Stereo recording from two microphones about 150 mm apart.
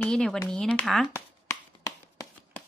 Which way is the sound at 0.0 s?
5° left (ahead or behind).